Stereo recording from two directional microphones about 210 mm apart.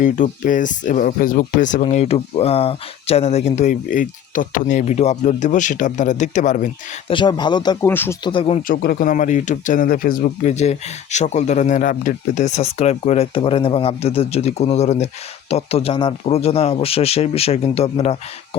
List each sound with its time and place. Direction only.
0.0 s speech: 40° left (ahead or behind)
7.1 s speech: 20° left (ahead or behind)
8.2 s speech: 25° left (ahead or behind)
8.6 s speech: 45° left (ahead or behind); by 18.2 s 30° left (ahead or behind)